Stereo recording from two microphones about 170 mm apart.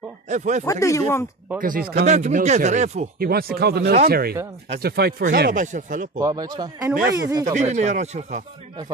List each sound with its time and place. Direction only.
0.3 s speech: 45° right (ahead or behind)
0.7 s speech: 20° left (ahead or behind)
1.6 s speech: 55° right (ahead or behind)
2.0 s speech: 45° right (ahead or behind)
3.2 s speech: 65° right (ahead or behind)
5.2 s speech: 55° right (ahead or behind)
6.1 s speech: 20° right (ahead or behind)
7.5 s speech: 45° right (ahead or behind)